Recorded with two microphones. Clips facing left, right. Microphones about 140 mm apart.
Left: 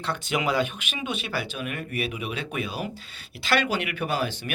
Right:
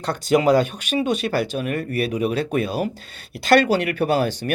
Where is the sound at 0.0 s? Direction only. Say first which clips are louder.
Right 9 dB; 40° right (ahead or behind).